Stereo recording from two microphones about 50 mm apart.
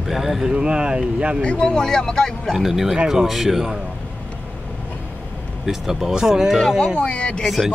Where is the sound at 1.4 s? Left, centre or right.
Centre.